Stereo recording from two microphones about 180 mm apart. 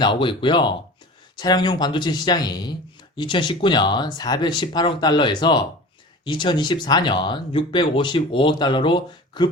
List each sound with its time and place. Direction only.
0.0 s speech: 25° left (ahead or behind)